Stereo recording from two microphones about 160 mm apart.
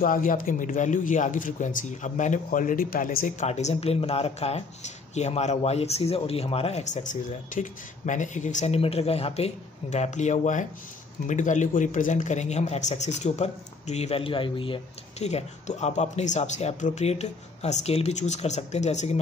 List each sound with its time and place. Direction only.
0.0 s speech: 60° left (ahead or behind)
3.3 s a man's voice: 45° left (ahead or behind)